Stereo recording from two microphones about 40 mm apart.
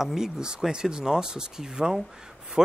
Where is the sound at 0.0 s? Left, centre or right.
Centre.